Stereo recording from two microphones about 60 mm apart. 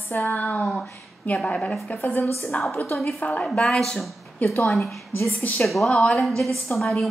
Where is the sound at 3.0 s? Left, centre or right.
Left.